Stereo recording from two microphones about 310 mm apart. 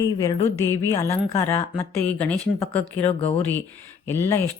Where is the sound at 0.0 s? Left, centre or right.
Centre.